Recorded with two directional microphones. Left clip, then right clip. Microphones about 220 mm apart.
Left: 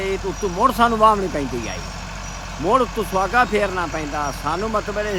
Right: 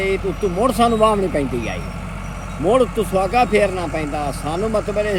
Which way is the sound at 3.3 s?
45° left (ahead or behind).